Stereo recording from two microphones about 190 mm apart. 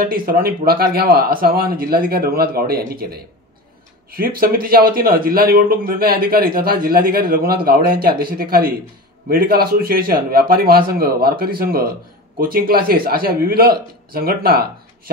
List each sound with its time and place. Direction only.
0.0 s speech: 50° right (ahead or behind)